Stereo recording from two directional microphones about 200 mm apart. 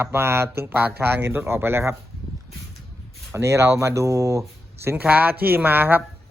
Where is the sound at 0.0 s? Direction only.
10° right (ahead or behind).